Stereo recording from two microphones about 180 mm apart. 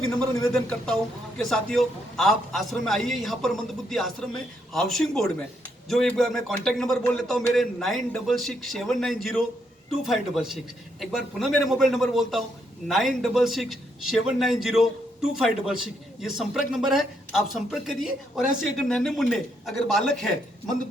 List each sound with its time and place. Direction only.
0.3 s a man's voice: 5° left (ahead or behind)